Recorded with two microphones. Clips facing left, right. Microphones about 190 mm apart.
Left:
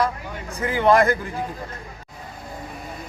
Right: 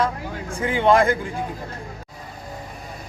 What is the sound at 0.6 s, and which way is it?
Speech, 20° right (ahead or behind).